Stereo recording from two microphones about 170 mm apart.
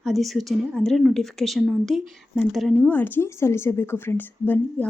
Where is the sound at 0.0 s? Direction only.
Centre (ahead or behind).